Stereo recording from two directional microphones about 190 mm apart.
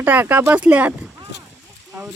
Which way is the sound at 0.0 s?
10° right (ahead or behind).